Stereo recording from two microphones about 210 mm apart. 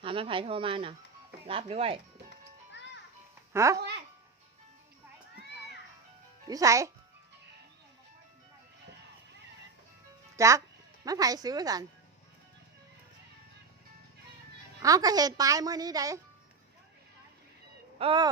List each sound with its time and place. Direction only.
0.0 s speech: 25° right (ahead or behind)
3.5 s a child's voice: 15° right (ahead or behind)
6.5 s speech: 15° right (ahead or behind)
10.3 s speech: 15° right (ahead or behind)
14.8 s speech: 15° right (ahead or behind)
18.0 s speech: 20° right (ahead or behind)